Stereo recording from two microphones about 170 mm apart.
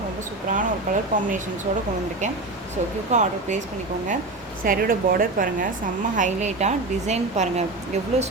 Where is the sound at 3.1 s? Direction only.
45° right (ahead or behind).